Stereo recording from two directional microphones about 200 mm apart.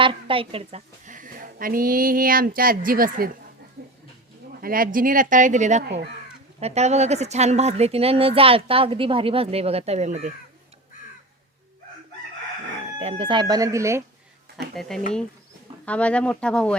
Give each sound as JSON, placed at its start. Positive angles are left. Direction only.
{"t": 0.0, "sound": "a woman's voice", "side_deg": -25}
{"t": 4.6, "sound": "speech", "side_deg": -45}
{"t": 13.0, "sound": "speech", "side_deg": -30}
{"t": 14.8, "sound": "speech", "side_deg": 0}